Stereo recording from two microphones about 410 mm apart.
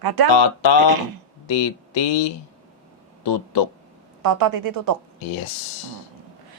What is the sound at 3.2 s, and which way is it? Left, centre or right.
Speech, left.